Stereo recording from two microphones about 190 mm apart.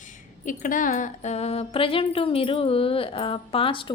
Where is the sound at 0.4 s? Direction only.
45° left (ahead or behind).